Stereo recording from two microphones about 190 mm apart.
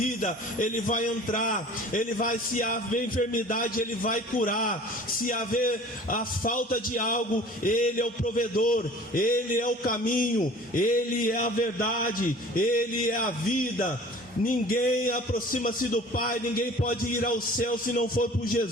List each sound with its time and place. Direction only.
0.2 s a man's voice: 45° left (ahead or behind)
14.4 s a man's voice: 45° left (ahead or behind)